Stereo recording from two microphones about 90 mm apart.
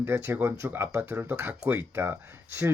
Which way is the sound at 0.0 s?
25° right (ahead or behind).